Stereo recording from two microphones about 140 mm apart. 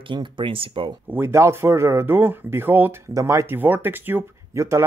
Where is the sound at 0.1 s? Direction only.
35° right (ahead or behind).